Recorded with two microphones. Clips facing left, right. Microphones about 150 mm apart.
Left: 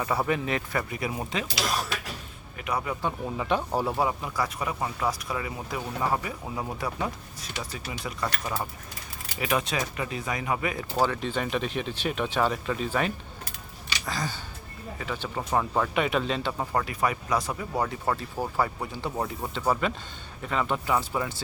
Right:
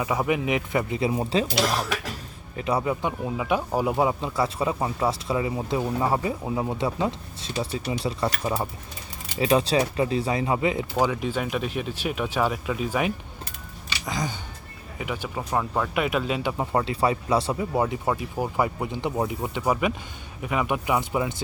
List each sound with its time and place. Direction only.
0.0 s speech: 15° right (ahead or behind); by 1.5 s 30° right (ahead or behind)
2.6 s speech: 30° right (ahead or behind)
2.9 s speech: 15° right (ahead or behind)
15.4 s speech: centre (ahead or behind)
16.7 s speech: 25° right (ahead or behind)